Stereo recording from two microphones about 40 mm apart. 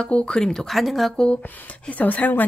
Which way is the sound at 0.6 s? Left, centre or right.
Centre.